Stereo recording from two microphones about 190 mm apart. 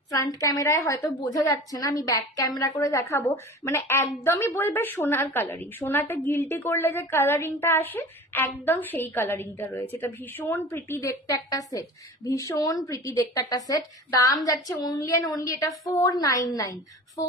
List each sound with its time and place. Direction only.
0.1 s a woman's voice: 15° left (ahead or behind)